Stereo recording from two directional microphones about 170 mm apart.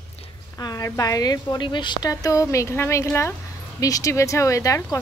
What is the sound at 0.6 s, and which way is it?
A woman's voice, 20° left (ahead or behind).